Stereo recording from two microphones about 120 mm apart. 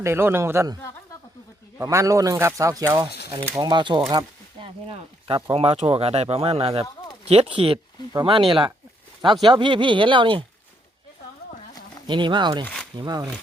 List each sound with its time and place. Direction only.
0.0 s speech: 20° right (ahead or behind)
1.8 s speech: 25° right (ahead or behind)
3.6 s speech: 40° right (ahead or behind)
4.6 s a sound: 50° right (ahead or behind)
5.5 s speech: 55° right (ahead or behind)
12.0 s speech: 40° right (ahead or behind)
12.6 s a sound: 5° left (ahead or behind)
13.0 s speech: 35° right (ahead or behind)